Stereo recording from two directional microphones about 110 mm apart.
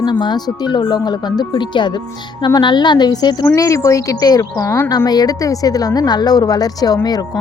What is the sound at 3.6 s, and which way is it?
Speech, 30° left (ahead or behind).